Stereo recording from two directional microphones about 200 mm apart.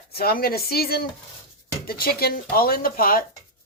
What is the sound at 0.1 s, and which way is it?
Speech, 50° left (ahead or behind).